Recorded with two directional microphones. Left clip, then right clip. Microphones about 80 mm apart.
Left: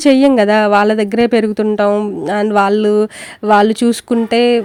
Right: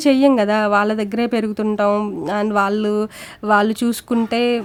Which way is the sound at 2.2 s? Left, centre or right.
Left.